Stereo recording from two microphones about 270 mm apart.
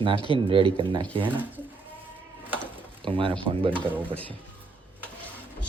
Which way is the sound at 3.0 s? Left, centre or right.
Centre.